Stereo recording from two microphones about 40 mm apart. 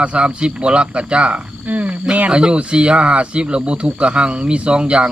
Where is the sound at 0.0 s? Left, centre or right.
Right.